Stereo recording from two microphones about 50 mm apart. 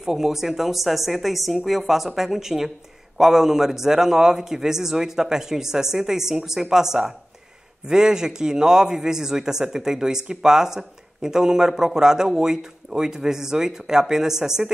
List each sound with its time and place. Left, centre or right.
0.0 s a woman's voice: centre